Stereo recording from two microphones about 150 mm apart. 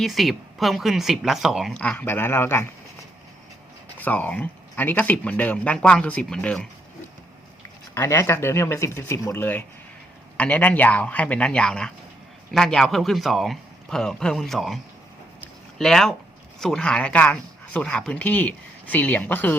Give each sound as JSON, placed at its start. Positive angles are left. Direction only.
{"t": 0.0, "sound": "a man's voice", "side_deg": 0}
{"t": 1.8, "sound": "speech", "side_deg": 10}
{"t": 3.9, "sound": "speech", "side_deg": 10}
{"t": 7.9, "sound": "a man's voice", "side_deg": 20}
{"t": 15.8, "sound": "a man's voice", "side_deg": 0}